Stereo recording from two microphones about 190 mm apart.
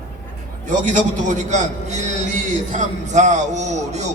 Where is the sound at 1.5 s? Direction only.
40° right (ahead or behind).